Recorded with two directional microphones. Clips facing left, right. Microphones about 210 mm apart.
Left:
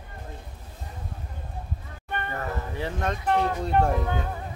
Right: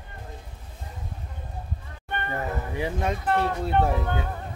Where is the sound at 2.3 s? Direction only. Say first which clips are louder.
Right 4 dB; 15° right (ahead or behind).